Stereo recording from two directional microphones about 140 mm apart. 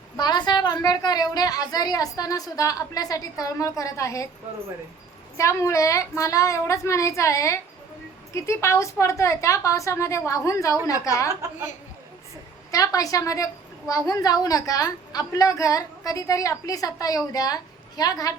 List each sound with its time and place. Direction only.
0.2 s a woman's voice: 30° left (ahead or behind)
5.4 s a woman's voice: 20° left (ahead or behind)
12.7 s a woman's voice: 25° left (ahead or behind)